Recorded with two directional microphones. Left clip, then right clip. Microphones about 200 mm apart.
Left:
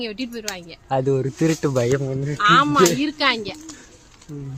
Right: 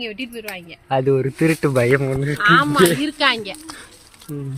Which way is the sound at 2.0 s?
30° right (ahead or behind).